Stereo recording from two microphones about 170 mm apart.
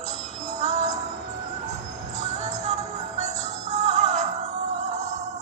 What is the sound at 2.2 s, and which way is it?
Music, 40° right (ahead or behind).